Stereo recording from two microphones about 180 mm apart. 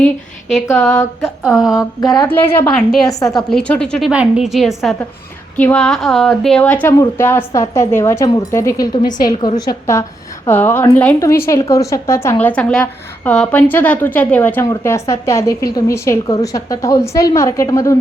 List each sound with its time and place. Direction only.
0.0 s a woman's voice: centre (ahead or behind)
1.7 s a woman's voice: 20° left (ahead or behind)
2.2 s a woman's voice: 10° left (ahead or behind)
3.1 s a woman's voice: 20° left (ahead or behind)
3.3 s a woman's voice: 5° left (ahead or behind)